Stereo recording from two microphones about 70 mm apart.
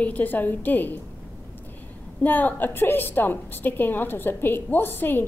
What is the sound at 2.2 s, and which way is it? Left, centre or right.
A woman's voice, left.